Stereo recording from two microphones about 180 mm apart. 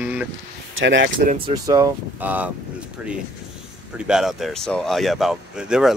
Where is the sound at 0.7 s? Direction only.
90° right.